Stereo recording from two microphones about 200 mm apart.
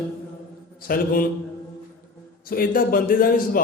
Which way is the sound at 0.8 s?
45° left (ahead or behind).